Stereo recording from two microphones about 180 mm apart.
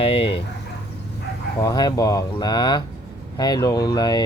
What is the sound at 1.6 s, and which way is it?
Speech, 20° left (ahead or behind).